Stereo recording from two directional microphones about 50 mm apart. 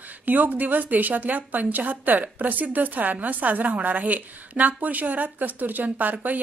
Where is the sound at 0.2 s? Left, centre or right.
Right.